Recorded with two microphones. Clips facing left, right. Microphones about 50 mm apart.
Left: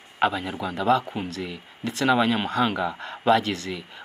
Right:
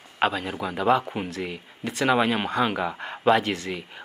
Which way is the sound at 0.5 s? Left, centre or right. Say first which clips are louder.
Even; centre.